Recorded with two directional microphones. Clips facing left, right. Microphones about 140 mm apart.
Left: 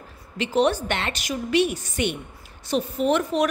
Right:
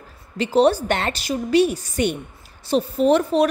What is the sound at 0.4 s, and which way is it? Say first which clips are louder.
A woman's voice: right 4 dB; 35° right (ahead or behind).